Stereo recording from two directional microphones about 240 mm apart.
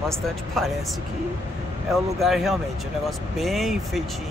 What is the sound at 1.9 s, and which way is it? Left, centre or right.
Speech, centre.